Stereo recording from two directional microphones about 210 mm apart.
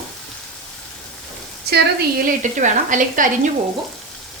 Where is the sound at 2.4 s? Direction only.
35° right (ahead or behind).